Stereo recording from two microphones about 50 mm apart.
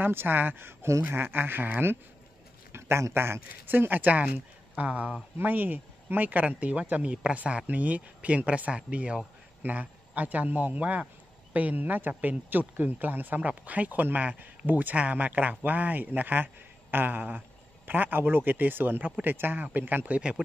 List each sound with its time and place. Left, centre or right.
0.0 s speech: right
2.7 s speech: right
3.8 s speech: right
5.4 s a man's voice: right
13.4 s speech: right
20.1 s speech: right